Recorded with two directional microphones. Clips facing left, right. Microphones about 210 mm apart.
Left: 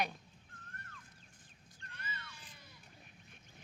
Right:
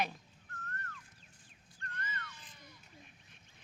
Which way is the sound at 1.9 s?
10° left (ahead or behind).